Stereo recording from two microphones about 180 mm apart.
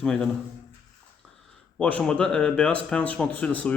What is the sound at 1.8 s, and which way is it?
A man's voice, 5° left (ahead or behind).